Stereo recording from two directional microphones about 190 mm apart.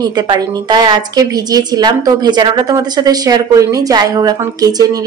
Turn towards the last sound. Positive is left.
turn(degrees=-20)  # may be behind; listen again after turning